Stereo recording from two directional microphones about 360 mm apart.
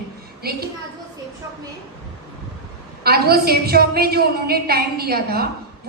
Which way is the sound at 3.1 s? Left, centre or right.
Right.